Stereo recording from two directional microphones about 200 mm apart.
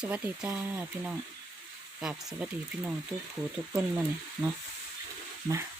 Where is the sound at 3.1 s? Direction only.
15° right (ahead or behind).